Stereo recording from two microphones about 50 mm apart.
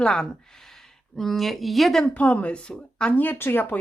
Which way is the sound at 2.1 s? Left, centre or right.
Left.